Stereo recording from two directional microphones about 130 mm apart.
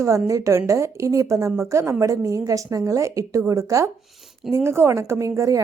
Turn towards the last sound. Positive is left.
turn(degrees=-25)  # may be behind; listen again after turning